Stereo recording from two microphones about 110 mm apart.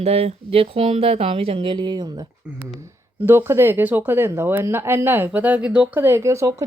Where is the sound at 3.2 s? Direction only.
20° right (ahead or behind).